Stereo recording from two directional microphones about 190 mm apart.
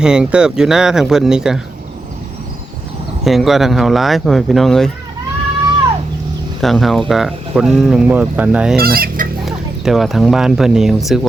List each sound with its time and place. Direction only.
0.0 s speech: 5° right (ahead or behind)
3.2 s speech: centre (ahead or behind)
6.6 s speech: centre (ahead or behind)
8.8 s fowl: 50° right (ahead or behind)
9.5 s speech: centre (ahead or behind)